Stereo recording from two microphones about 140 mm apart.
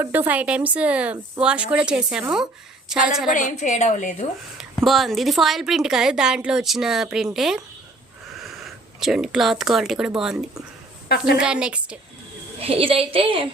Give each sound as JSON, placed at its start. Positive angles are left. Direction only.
{"t": 0.0, "sound": "a woman's voice", "side_deg": -15}
{"t": 3.3, "sound": "a woman's voice", "side_deg": 60}
{"t": 4.8, "sound": "a woman's voice", "side_deg": 0}
{"t": 12.6, "sound": "a woman's voice", "side_deg": -40}